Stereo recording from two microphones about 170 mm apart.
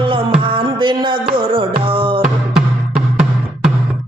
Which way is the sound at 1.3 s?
30° right (ahead or behind).